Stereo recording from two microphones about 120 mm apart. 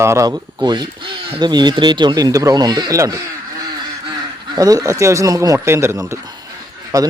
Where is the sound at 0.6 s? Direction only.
40° right (ahead or behind).